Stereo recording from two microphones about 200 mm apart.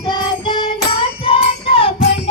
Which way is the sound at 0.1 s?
25° left (ahead or behind).